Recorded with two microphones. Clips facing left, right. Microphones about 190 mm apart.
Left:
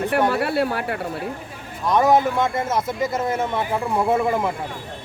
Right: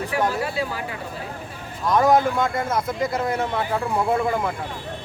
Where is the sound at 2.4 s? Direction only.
25° left (ahead or behind).